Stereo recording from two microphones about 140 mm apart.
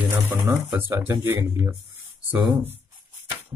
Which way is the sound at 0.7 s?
15° right (ahead or behind).